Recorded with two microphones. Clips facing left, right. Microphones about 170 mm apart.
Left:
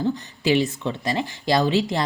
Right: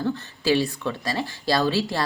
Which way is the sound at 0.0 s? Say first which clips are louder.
Left 2 dB; 20° left (ahead or behind).